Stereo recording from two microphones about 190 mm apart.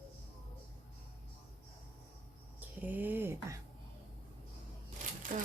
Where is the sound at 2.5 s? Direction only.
10° right (ahead or behind).